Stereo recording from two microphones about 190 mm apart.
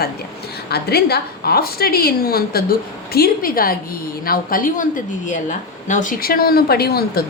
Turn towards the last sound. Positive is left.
turn(degrees=55)  # may be behind; listen again after turning